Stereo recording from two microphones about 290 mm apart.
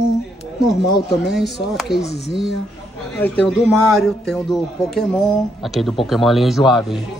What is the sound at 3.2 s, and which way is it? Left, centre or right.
A man's voice, centre.